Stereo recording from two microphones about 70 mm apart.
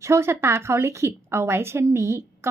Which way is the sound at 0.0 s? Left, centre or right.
Right.